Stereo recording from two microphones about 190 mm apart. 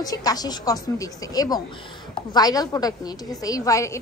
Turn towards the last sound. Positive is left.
turn(degrees=15)  # may be behind; listen again after turning